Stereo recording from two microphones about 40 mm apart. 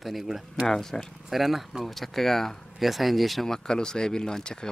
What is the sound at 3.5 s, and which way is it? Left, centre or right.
Speech, centre.